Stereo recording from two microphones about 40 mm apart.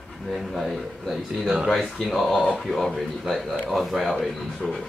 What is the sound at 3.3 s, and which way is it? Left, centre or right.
Speech, centre.